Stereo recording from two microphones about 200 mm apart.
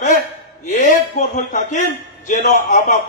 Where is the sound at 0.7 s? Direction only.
45° left (ahead or behind).